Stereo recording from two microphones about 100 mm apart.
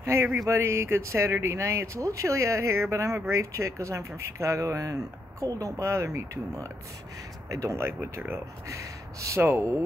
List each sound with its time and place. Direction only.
0.0 s speech: 25° right (ahead or behind)